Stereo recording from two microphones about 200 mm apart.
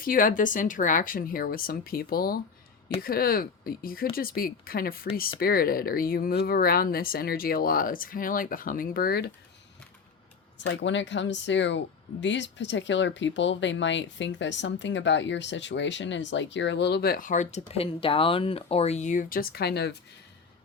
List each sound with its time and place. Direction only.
0.0 s speech: 45° left (ahead or behind)
10.6 s speech: 65° left (ahead or behind)